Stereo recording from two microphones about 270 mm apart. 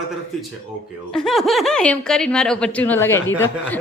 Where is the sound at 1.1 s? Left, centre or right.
Centre.